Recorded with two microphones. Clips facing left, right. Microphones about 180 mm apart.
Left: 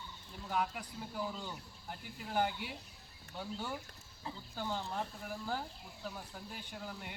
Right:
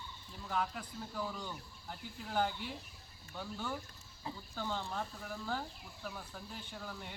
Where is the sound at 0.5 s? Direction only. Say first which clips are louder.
Left 1 dB; 15° left (ahead or behind).